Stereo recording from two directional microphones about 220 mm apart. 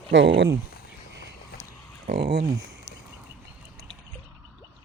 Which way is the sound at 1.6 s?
30° left (ahead or behind).